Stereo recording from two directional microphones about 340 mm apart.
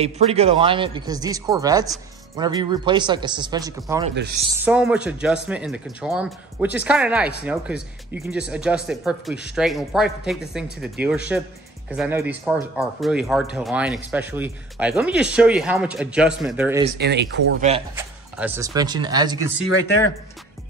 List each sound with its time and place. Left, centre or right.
0.0 s speech: centre
16.8 s speech: right
17.9 s speech: centre